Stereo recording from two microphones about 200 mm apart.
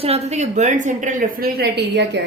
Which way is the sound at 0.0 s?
30° right (ahead or behind).